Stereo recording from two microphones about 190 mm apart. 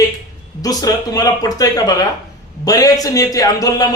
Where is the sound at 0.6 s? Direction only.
20° left (ahead or behind).